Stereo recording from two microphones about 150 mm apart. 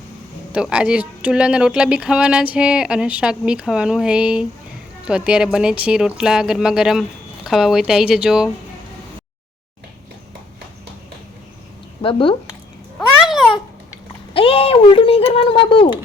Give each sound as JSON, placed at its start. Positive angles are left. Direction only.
{"t": 0.5, "sound": "speech", "side_deg": -5}
{"t": 12.0, "sound": "speech", "side_deg": 35}
{"t": 13.0, "sound": "babbling", "side_deg": -5}
{"t": 14.3, "sound": "speech", "side_deg": 40}